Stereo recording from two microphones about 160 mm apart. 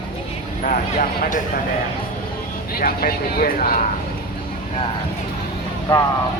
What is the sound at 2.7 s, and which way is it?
Speech, 65° left (ahead or behind).